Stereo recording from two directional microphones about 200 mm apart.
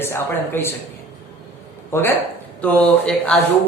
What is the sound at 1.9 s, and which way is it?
A man's voice, 10° left (ahead or behind).